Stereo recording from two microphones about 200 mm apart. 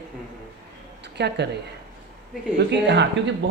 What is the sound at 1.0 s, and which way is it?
Speech, 60° right (ahead or behind).